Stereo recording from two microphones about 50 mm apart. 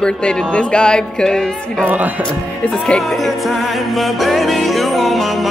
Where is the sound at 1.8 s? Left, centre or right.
Right.